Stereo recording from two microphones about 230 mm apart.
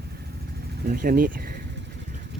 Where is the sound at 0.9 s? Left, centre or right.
Right.